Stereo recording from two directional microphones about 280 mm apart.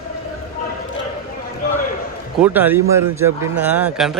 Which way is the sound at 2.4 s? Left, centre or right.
Centre.